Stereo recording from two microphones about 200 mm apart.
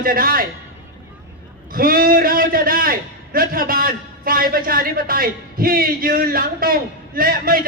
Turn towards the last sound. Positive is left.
turn(degrees=-45)  # may be behind; listen again after turning